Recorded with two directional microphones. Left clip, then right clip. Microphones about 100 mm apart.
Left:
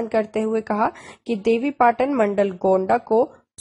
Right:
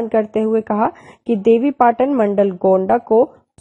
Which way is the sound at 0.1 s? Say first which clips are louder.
Right 5 dB; 35° right (ahead or behind).